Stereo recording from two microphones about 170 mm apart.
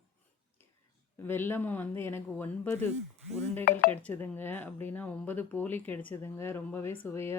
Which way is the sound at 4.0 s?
10° left (ahead or behind).